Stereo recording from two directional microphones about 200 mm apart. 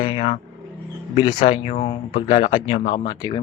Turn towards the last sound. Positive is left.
turn(degrees=20)  # may be behind; listen again after turning